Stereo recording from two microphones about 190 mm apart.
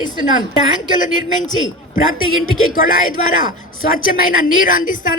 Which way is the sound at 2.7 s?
45° left (ahead or behind).